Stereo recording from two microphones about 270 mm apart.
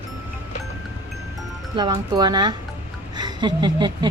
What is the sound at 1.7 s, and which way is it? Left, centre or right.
Speech, centre.